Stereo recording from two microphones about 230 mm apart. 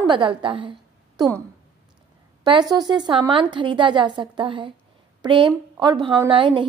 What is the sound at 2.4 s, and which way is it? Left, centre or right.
A woman's voice, centre.